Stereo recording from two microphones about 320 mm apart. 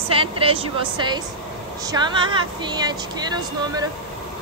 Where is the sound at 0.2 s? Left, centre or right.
Centre.